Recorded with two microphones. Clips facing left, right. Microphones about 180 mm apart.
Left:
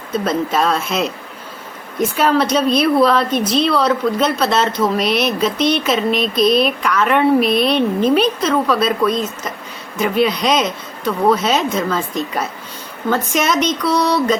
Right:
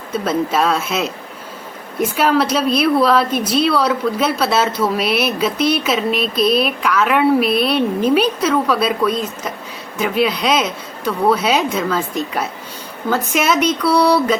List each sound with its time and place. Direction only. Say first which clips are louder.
0.1 s a woman's voice: even; 5° right (ahead or behind)